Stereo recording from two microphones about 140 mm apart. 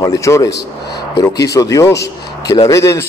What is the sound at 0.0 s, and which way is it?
A man's voice, 20° left (ahead or behind).